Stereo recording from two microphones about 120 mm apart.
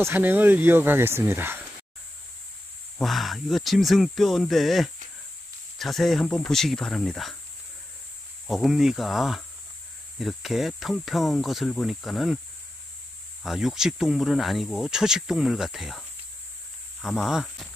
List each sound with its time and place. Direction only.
0.0 s speech: 15° right (ahead or behind)
3.0 s speech: centre (ahead or behind)
8.5 s speech: centre (ahead or behind)
13.4 s speech: centre (ahead or behind)